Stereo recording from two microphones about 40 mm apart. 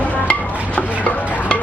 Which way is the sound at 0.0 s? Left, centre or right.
Left.